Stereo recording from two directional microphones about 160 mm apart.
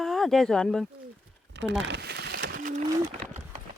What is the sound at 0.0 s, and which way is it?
Speech, centre (ahead or behind).